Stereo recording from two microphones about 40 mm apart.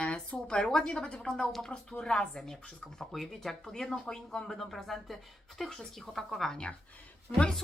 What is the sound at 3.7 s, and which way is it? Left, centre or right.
A woman's voice, centre.